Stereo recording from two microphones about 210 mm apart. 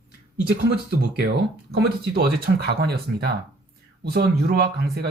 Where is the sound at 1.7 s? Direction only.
50° right (ahead or behind).